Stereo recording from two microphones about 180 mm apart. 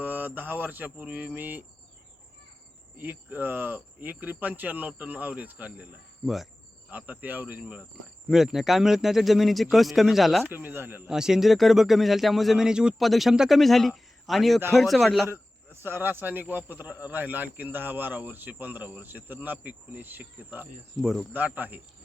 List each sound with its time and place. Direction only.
0.0 s speech: 10° right (ahead or behind)
3.0 s a man's voice: 10° right (ahead or behind)
10.4 s a man's voice: 10° right (ahead or behind)
15.3 s speech: 15° right (ahead or behind)